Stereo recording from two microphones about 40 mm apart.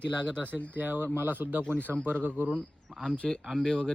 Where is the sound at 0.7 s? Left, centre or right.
Right.